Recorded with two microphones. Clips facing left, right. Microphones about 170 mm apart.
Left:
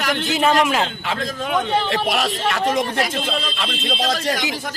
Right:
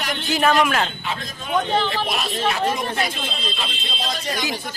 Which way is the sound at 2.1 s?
80° left.